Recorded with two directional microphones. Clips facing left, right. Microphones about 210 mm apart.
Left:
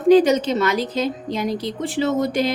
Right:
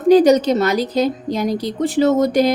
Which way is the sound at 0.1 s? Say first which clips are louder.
Right 3 dB; 40° right (ahead or behind).